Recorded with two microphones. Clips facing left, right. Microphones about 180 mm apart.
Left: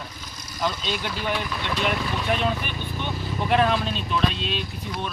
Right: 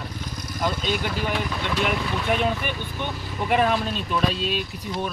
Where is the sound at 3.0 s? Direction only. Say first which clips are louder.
Even; 10° right (ahead or behind).